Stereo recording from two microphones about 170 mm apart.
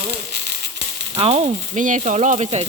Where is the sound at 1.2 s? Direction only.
40° right (ahead or behind).